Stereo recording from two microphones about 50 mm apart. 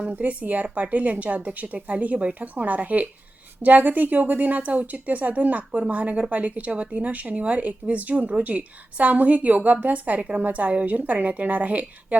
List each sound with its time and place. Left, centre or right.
0.2 s a woman's voice: right